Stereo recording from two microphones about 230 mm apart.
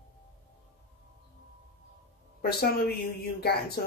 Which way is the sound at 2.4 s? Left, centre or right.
Left.